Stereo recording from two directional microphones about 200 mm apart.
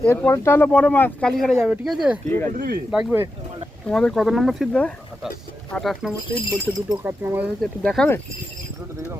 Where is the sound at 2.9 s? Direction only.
5° right (ahead or behind).